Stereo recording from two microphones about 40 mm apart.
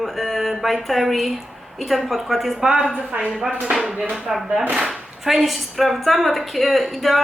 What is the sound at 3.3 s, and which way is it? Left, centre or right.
A woman's voice, centre.